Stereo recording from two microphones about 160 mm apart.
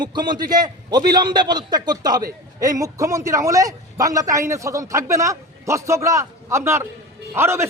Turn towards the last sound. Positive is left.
turn(degrees=-15)  # may be behind; listen again after turning